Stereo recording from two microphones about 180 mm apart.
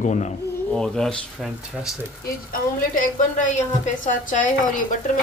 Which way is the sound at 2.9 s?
45° left (ahead or behind).